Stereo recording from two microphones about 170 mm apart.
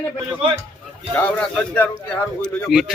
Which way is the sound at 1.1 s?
10° left (ahead or behind).